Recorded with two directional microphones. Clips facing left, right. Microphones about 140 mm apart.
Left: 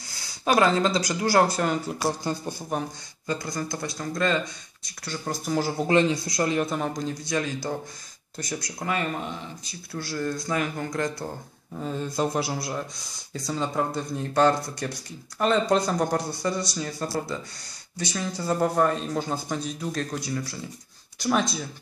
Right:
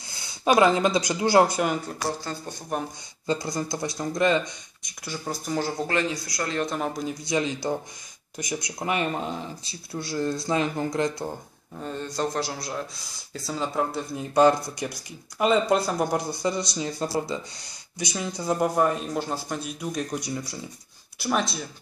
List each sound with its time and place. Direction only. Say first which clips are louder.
0.1 s speech: right 2 dB; 25° right (ahead or behind)
2.0 s speech: left 5 dB; 15° left (ahead or behind)
3.3 s speech: right 2 dB; 20° right (ahead or behind); by 5.9 s 5° left (ahead or behind)
5.9 s speech: left 5 dB; 25° left (ahead or behind)
6.6 s speech: even; centre (ahead or behind)
7.2 s speech: right 4 dB; 20° right (ahead or behind)
11.7 s speech: left 2 dB; centre (ahead or behind); by 20.6 s 15° right (ahead or behind)
21.2 s speech: left 2 dB; centre (ahead or behind)